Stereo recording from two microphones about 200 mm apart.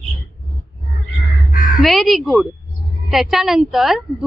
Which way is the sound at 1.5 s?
45° left (ahead or behind).